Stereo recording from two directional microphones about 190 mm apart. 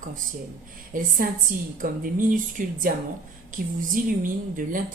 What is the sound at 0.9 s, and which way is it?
Speech, 45° right (ahead or behind).